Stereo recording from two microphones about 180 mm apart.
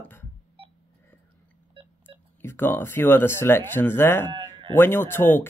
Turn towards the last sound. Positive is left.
turn(degrees=10)  # may be behind; listen again after turning